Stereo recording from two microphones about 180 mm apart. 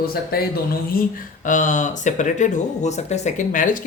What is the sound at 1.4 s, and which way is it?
Speech, 45° left (ahead or behind).